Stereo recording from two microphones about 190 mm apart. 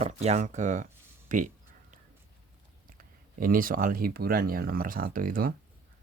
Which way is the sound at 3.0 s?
50° right (ahead or behind).